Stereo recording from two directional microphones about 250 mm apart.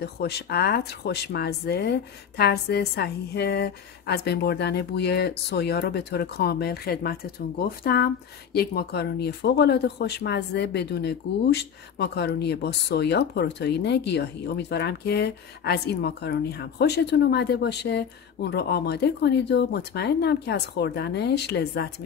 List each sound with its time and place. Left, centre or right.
0.0 s speech: left